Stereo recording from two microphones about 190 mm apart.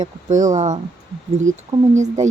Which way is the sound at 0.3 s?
40° right (ahead or behind).